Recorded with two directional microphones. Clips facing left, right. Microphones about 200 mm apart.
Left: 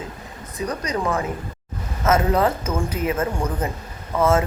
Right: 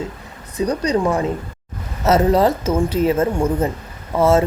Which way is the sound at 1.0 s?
15° right (ahead or behind).